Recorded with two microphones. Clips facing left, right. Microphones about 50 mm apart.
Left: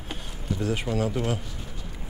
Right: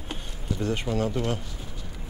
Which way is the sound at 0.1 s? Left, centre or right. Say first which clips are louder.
Left 1 dB; centre.